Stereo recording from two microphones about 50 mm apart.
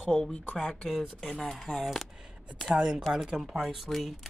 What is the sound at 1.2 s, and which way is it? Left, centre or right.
Speech, left.